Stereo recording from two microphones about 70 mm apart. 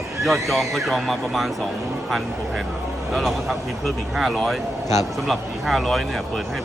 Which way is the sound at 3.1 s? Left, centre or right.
Centre.